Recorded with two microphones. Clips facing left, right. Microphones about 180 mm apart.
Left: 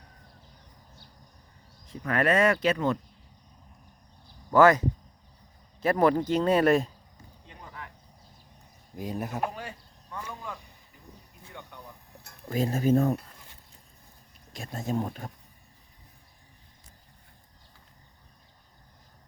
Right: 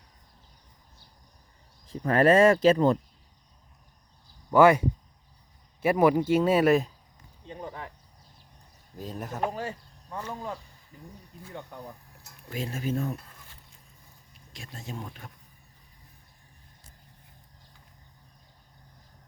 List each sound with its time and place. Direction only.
1.9 s speech: 30° right (ahead or behind)
4.5 s speech: 10° right (ahead or behind)
5.8 s speech: 10° right (ahead or behind)
7.4 s a sound: 30° right (ahead or behind)
9.0 s speech: 10° left (ahead or behind)
9.6 s speech: 35° right (ahead or behind)
11.7 s speech: 40° right (ahead or behind)
12.5 s speech: 40° left (ahead or behind)
14.5 s speech: 45° left (ahead or behind)